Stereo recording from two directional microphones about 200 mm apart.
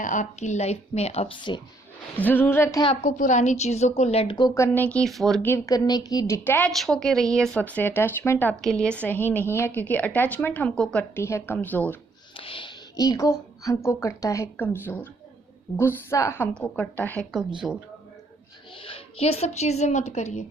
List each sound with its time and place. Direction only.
0.0 s speech: 40° left (ahead or behind); by 1.6 s 25° left (ahead or behind)
2.1 s a woman's voice: 10° left (ahead or behind)
2.8 s a woman's voice: 25° left (ahead or behind)
3.1 s a woman's voice: 40° left (ahead or behind); by 11.9 s 10° left (ahead or behind)
12.4 s a sound: 25° left (ahead or behind)
13.7 s a woman's voice: 15° left (ahead or behind)
17.6 s speech: 5° right (ahead or behind)
18.8 s speech: 30° left (ahead or behind)